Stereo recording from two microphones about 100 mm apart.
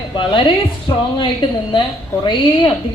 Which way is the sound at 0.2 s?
55° left (ahead or behind).